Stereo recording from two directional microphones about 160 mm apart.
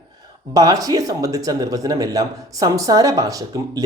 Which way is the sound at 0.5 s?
20° right (ahead or behind).